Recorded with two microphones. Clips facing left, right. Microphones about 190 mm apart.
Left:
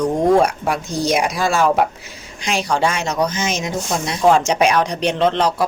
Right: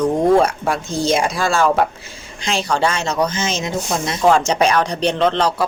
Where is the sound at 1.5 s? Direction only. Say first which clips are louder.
Even; 5° left (ahead or behind).